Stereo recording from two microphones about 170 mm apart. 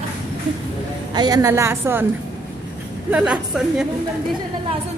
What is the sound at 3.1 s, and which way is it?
Speech, 5° right (ahead or behind).